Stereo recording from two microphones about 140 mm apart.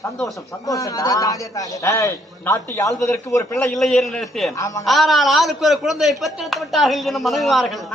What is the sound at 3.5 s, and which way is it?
A woman's voice, centre (ahead or behind).